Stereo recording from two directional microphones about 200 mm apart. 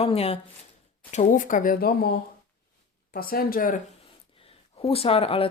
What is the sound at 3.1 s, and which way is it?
Speech, 50° left (ahead or behind).